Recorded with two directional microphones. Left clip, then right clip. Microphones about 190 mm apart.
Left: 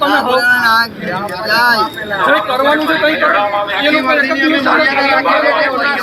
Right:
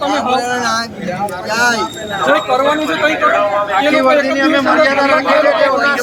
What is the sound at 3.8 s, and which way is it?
A man's voice, 55° right (ahead or behind).